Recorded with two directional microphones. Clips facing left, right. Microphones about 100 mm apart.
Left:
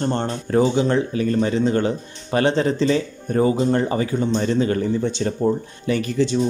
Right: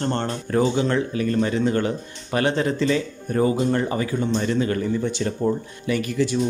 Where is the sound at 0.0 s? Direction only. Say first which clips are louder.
Left 2 dB; 15° left (ahead or behind).